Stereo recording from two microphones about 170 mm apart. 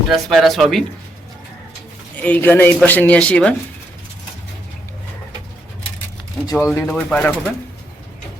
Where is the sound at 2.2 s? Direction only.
10° left (ahead or behind).